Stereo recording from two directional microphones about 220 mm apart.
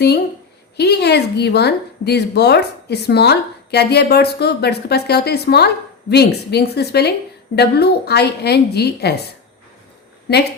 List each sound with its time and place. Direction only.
0.8 s a woman's voice: 50° left (ahead or behind)